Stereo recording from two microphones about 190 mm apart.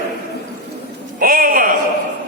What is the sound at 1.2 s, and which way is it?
Speech, 50° right (ahead or behind).